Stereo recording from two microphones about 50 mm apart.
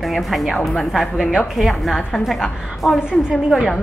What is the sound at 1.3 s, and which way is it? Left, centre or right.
Speech, centre.